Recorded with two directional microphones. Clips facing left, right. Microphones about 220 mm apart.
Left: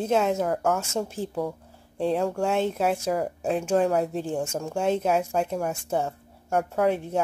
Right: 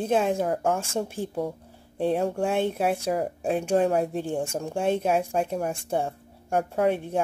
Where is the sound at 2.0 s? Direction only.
20° right (ahead or behind).